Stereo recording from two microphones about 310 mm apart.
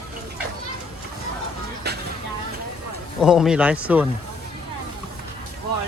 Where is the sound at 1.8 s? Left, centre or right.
Right.